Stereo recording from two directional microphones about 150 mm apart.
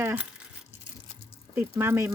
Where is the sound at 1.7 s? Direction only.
15° right (ahead or behind).